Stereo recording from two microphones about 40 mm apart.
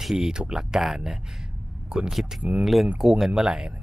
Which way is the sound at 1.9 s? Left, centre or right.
Right.